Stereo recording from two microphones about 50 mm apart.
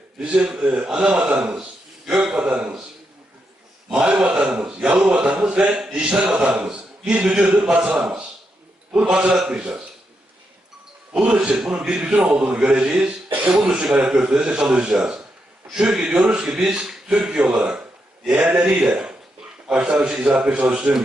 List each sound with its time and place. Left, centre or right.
0.2 s a man's voice: right
2.0 s a man's voice: centre
3.9 s a man's voice: right
8.0 s a man's voice: centre
9.3 s a man's voice: centre
11.4 s a man's voice: centre
13.5 s a man's voice: centre